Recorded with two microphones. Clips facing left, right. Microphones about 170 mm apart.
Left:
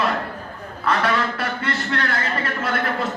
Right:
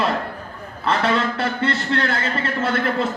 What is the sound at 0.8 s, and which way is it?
A man's voice, 25° right (ahead or behind).